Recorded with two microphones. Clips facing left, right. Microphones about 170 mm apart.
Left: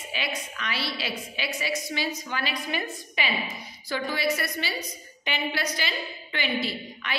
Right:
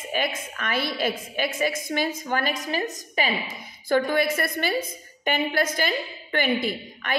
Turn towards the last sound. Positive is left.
turn(degrees=-50)  # may be behind; listen again after turning